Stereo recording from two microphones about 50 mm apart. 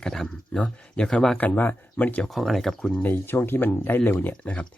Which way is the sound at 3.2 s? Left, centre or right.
Left.